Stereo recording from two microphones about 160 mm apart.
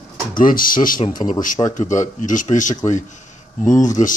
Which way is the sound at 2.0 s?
50° left (ahead or behind).